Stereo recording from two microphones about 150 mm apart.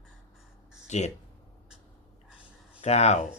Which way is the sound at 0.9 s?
50° left (ahead or behind).